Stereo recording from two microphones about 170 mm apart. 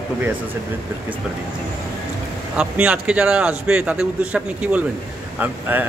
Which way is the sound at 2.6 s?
5° right (ahead or behind).